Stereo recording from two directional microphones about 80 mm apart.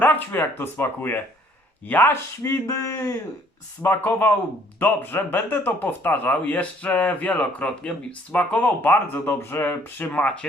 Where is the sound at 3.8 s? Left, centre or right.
Left.